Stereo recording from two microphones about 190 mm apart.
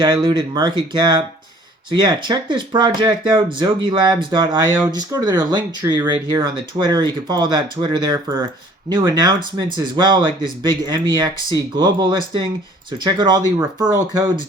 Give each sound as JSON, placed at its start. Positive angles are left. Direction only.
{"t": 0.0, "sound": "speech", "side_deg": -25}